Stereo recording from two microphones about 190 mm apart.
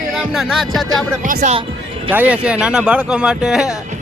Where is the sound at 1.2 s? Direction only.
45° right (ahead or behind).